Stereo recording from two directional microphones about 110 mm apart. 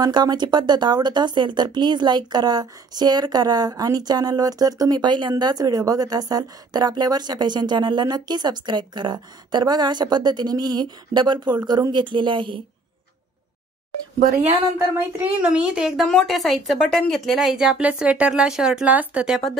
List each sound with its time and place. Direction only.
0.0 s speech: 40° right (ahead or behind)
15.0 s a woman's voice: 15° right (ahead or behind)